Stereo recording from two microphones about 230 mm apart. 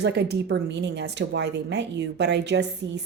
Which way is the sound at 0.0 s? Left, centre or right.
Right.